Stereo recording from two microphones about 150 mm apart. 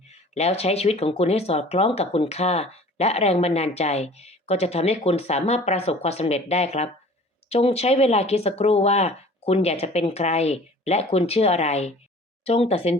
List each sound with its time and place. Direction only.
0.1 s speech: 45° left (ahead or behind)